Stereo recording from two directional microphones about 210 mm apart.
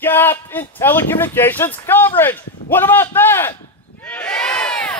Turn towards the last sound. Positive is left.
turn(degrees=5)  # may be behind; listen again after turning